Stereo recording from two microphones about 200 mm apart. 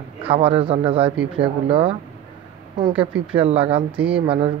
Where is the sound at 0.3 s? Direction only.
30° right (ahead or behind).